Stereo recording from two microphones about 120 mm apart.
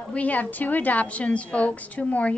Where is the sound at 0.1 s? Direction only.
15° left (ahead or behind).